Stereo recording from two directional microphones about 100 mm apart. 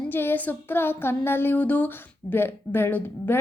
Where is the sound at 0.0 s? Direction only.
20° left (ahead or behind).